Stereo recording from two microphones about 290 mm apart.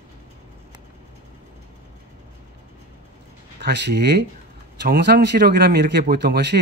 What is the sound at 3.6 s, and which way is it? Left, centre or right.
Speech, right.